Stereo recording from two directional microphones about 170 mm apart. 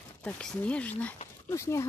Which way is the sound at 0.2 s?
5° left (ahead or behind).